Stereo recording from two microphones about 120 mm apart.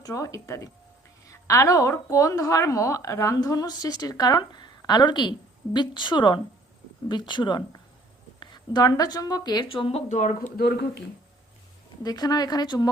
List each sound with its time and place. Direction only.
0.0 s a woman's voice: 30° left (ahead or behind)
9.6 s speech: 50° left (ahead or behind)
10.1 s speech: 90° left
12.0 s speech: 35° left (ahead or behind)